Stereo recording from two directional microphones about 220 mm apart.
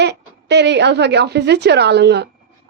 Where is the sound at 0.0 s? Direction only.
50° right (ahead or behind).